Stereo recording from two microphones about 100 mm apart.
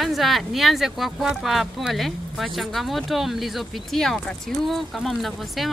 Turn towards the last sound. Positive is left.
turn(degrees=0)  # may be behind; listen again after turning